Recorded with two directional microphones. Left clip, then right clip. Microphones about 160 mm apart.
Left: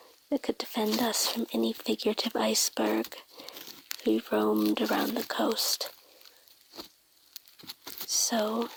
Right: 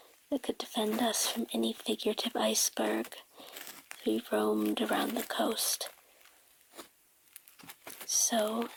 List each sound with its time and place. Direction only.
0.3 s speech: 30° left (ahead or behind)
3.5 s crumpling: 10° left (ahead or behind)
3.8 s speech: 30° left (ahead or behind)
7.3 s a sound: 20° left (ahead or behind)
8.0 s speech: 35° left (ahead or behind)